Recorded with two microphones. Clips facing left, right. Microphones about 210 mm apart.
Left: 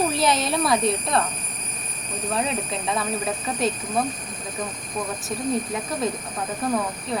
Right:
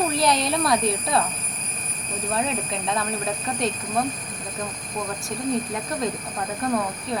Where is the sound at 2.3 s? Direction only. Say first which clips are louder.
Even; centre (ahead or behind).